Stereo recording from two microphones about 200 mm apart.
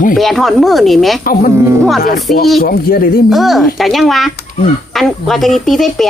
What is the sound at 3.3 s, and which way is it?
Speech, centre (ahead or behind).